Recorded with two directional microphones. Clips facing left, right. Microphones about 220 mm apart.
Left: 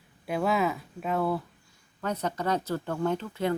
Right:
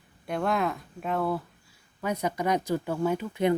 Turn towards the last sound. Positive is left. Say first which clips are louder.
# right 3 dB
turn(degrees=-15)  # may be behind; listen again after turning